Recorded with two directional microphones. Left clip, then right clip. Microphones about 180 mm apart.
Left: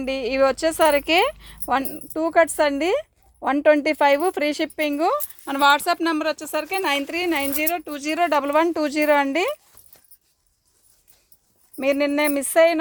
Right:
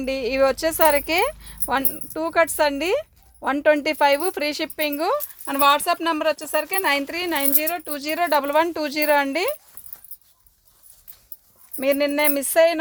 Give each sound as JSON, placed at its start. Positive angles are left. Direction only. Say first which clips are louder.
{"t": 0.0, "sound": "speech", "louder": "even", "side_deg": 30}
{"t": 11.8, "sound": "speech", "louder": "even", "side_deg": 40}